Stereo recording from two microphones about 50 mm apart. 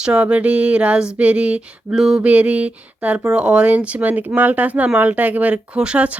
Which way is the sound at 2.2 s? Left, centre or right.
Right.